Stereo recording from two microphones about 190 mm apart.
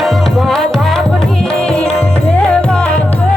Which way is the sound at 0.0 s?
Centre (ahead or behind).